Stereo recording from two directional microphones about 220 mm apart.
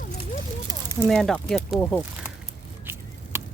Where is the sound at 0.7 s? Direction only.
10° right (ahead or behind).